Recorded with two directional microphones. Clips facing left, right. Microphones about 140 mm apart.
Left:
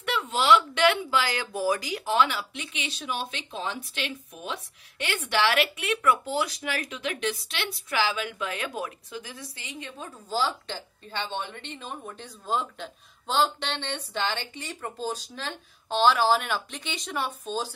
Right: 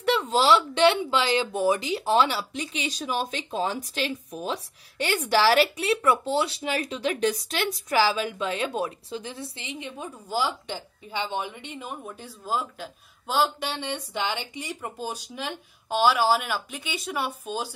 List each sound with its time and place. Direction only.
0.0 s speech: 35° right (ahead or behind); by 17.7 s 10° right (ahead or behind)